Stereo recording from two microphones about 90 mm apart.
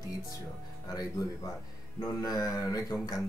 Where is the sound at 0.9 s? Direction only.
45° left (ahead or behind).